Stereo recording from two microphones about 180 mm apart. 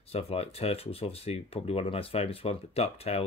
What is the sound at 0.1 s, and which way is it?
Speech, 35° left (ahead or behind).